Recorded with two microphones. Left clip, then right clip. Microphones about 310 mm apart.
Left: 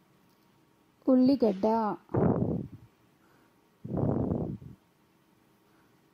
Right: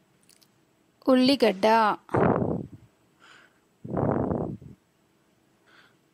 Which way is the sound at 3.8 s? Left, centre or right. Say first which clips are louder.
Right 5 dB; right.